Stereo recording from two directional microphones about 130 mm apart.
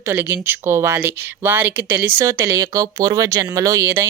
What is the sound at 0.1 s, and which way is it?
Speech, 15° right (ahead or behind).